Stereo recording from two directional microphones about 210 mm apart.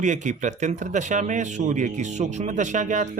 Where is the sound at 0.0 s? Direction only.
35° right (ahead or behind).